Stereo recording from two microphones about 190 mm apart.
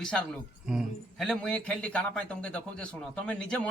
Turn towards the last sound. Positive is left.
turn(degrees=5)  # may be behind; listen again after turning